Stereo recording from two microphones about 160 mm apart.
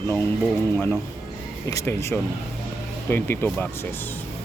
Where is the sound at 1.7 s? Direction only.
20° left (ahead or behind).